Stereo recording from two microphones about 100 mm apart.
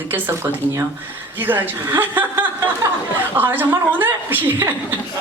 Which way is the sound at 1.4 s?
20° right (ahead or behind).